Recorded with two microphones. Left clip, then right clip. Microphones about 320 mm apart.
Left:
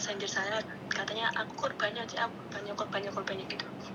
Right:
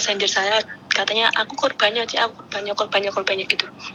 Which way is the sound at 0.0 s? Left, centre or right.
Right.